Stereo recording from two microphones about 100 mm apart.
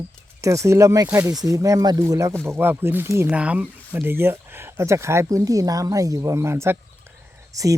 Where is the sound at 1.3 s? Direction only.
35° right (ahead or behind).